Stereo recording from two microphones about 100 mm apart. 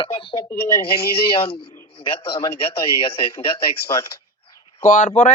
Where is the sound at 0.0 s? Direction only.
60° left (ahead or behind).